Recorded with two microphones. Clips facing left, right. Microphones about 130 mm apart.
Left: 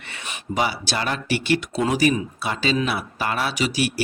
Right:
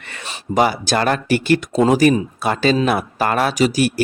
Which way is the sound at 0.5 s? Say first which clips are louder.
Right 7 dB; 45° right (ahead or behind).